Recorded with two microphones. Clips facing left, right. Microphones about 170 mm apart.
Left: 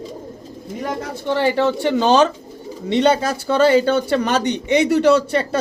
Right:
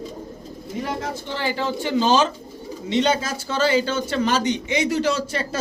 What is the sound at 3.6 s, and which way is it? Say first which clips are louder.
A man's voice: left 6 dB; 55° left (ahead or behind).